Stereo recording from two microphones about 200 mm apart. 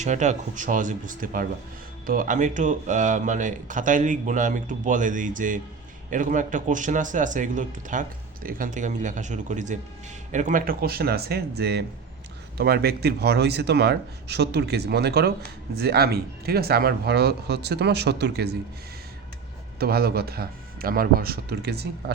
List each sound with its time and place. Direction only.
0.0 s speech: 35° right (ahead or behind); by 18.5 s 55° right (ahead or behind)
19.8 s speech: 50° right (ahead or behind)